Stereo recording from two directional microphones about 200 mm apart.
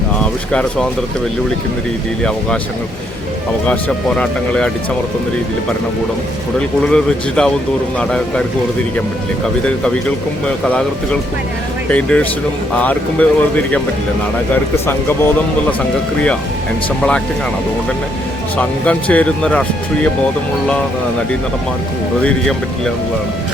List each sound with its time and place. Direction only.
0.2 s speech: 5° left (ahead or behind)
3.7 s speech: 5° left (ahead or behind)
6.6 s speech: 5° left (ahead or behind)
9.6 s speech: 5° left (ahead or behind)
14.8 s speech: 10° left (ahead or behind)
18.5 s speech: 5° left (ahead or behind)
22.2 s speech: 5° left (ahead or behind)